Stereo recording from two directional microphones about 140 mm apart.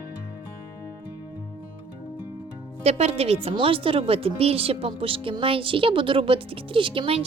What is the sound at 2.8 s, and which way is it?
A woman's voice, 45° right (ahead or behind).